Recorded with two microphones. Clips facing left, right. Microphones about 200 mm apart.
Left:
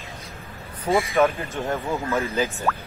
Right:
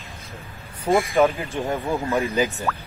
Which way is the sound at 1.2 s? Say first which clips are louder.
Right 1 dB; 15° right (ahead or behind).